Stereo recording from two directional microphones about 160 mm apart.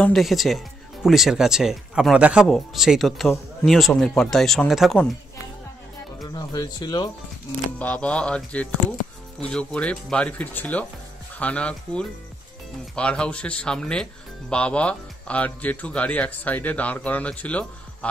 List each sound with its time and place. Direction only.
0.0 s speech: centre (ahead or behind)
6.3 s speech: 25° left (ahead or behind)
7.8 s speech: 5° left (ahead or behind)